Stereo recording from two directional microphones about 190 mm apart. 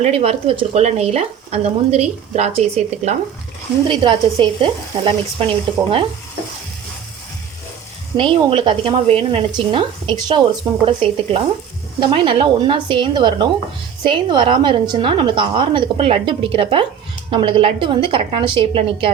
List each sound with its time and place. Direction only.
0.0 s stir: 30° right (ahead or behind)
3.8 s a woman's voice: 25° right (ahead or behind)
8.1 s a woman's voice: 30° right (ahead or behind)
11.9 s a woman's voice: 25° right (ahead or behind)